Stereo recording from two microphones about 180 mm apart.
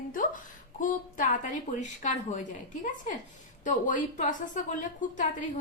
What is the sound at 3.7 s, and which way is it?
Speech, 45° left (ahead or behind).